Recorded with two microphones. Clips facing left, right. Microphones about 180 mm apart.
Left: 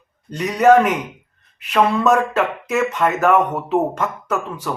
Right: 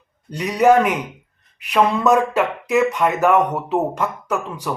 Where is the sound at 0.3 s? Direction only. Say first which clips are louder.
Left 1 dB; 10° right (ahead or behind).